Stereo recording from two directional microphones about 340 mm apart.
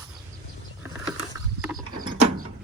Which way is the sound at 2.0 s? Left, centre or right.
Right.